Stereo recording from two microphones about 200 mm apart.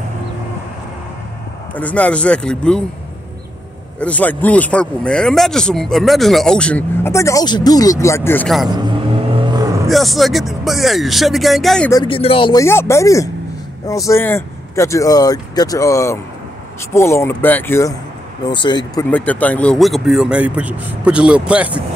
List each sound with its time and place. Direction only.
1.8 s speech: 5° left (ahead or behind)
4.0 s speech: 5° left (ahead or behind)
8.6 s vehicle: 20° right (ahead or behind)
9.8 s speech: centre (ahead or behind)
11.9 s speech: 25° left (ahead or behind)
12.6 s speech: 15° left (ahead or behind)
18.5 s speech: 20° left (ahead or behind)
19.0 s speech: 5° left (ahead or behind)